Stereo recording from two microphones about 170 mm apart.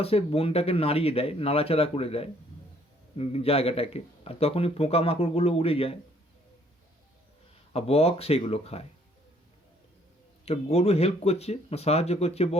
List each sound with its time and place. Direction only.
0.0 s a man's voice: 35° left (ahead or behind)
7.7 s a man's voice: 35° left (ahead or behind)
10.4 s a man's voice: 35° left (ahead or behind)